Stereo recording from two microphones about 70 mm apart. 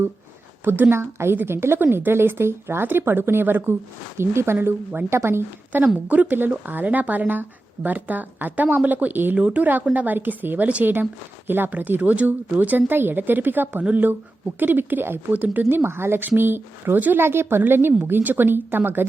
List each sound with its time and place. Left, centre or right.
0.6 s a woman's voice: right
4.5 s speech: right
5.0 s a woman's voice: right
5.8 s a woman's voice: right